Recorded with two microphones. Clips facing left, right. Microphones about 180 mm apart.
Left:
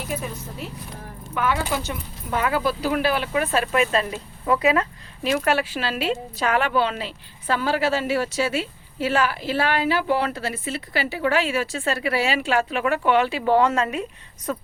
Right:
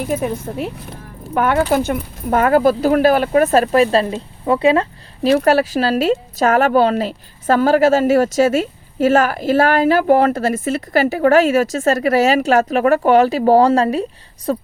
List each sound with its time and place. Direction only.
0.0 s speech: 55° right (ahead or behind); by 14.6 s 35° right (ahead or behind)